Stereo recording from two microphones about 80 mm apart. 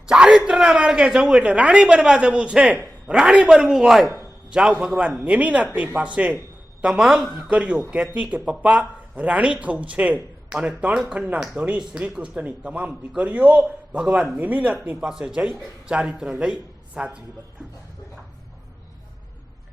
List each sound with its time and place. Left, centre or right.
0.0 s a man's voice: centre
6.8 s speech: centre